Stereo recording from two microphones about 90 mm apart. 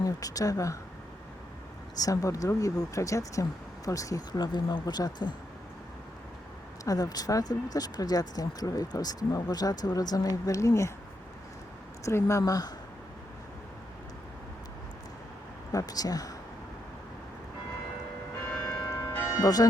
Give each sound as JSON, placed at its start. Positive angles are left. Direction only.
{"t": 0.0, "sound": "speech", "side_deg": 40}
{"t": 2.0, "sound": "speech", "side_deg": 40}
{"t": 6.8, "sound": "speech", "side_deg": 45}
{"t": 12.0, "sound": "speech", "side_deg": 35}
{"t": 15.7, "sound": "speech", "side_deg": 45}
{"t": 18.7, "sound": "church bell", "side_deg": 10}
{"t": 19.2, "sound": "music", "side_deg": 35}